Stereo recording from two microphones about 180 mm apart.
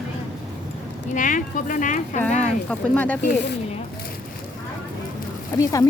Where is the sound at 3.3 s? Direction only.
70° left (ahead or behind).